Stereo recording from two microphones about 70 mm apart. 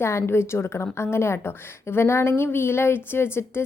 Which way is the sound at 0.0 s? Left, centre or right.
Left.